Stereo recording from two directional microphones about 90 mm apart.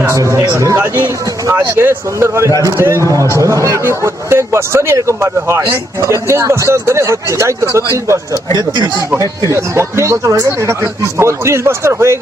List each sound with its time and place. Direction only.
0.0 s speech: 35° right (ahead or behind)